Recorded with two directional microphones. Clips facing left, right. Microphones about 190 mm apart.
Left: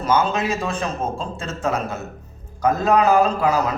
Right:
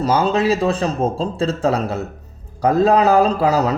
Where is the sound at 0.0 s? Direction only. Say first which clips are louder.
Right 4 dB; 35° right (ahead or behind).